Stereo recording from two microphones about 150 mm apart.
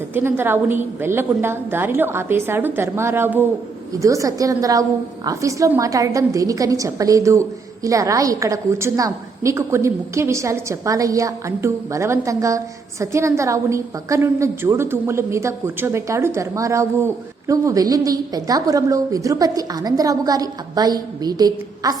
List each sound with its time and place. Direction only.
0.1 s a woman's voice: 15° right (ahead or behind)